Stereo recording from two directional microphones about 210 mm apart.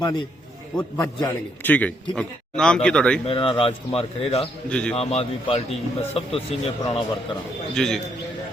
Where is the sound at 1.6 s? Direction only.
5° left (ahead or behind).